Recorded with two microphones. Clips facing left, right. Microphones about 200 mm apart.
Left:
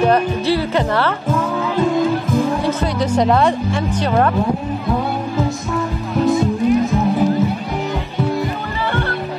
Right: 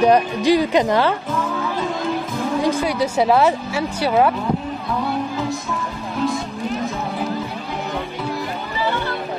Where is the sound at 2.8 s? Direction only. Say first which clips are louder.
Left 2 dB; 10° right (ahead or behind).